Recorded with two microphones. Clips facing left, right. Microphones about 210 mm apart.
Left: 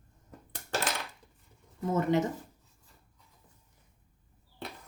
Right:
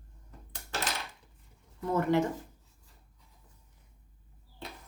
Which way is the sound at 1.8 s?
20° left (ahead or behind).